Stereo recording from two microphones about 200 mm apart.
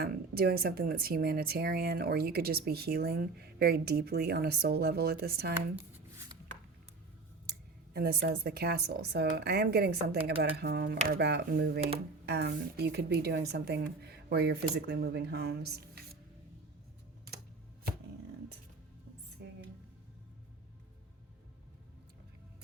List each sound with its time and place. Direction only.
0.0 s speech: 50° right (ahead or behind)
5.9 s shuffling cards: 15° right (ahead or behind)
7.9 s a woman's voice: 50° right (ahead or behind)